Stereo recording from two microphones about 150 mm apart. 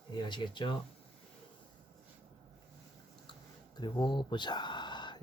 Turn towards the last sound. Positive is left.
turn(degrees=30)  # may be behind; listen again after turning